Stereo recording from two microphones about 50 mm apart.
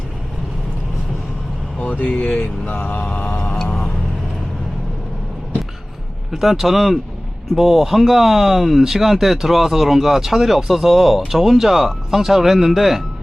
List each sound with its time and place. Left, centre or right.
1.8 s speech: left
2.4 s speech: left
6.3 s speech: centre